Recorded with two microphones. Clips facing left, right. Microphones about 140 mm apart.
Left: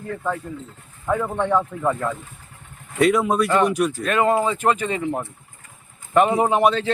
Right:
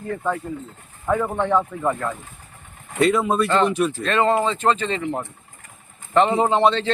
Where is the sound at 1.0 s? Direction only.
Centre (ahead or behind).